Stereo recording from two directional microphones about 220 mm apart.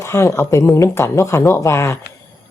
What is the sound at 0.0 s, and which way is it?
A woman's voice, 15° left (ahead or behind).